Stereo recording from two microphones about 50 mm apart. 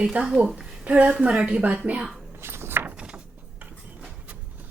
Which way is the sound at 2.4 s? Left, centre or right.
Right.